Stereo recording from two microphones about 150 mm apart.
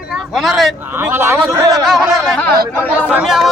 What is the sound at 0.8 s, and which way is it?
Speech, 15° right (ahead or behind).